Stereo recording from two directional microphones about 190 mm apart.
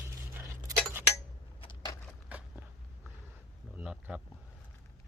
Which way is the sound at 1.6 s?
25° left (ahead or behind).